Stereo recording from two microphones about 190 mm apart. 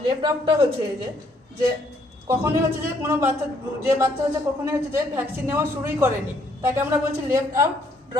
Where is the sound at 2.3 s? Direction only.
15° right (ahead or behind).